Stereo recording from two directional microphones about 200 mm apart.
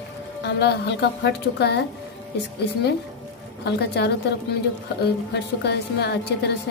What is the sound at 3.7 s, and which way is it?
Speech, 55° left (ahead or behind).